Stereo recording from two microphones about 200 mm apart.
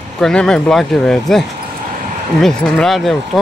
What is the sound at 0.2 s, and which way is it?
Speech, 5° left (ahead or behind).